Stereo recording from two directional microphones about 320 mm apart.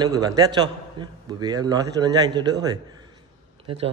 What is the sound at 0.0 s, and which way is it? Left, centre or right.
A man's voice, centre.